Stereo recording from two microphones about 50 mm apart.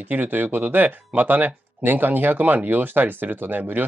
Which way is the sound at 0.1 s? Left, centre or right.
Right.